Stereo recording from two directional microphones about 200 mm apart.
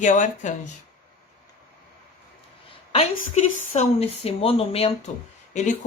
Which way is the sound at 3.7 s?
30° left (ahead or behind).